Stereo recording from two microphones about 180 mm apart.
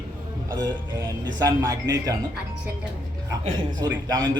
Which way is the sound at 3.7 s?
20° right (ahead or behind).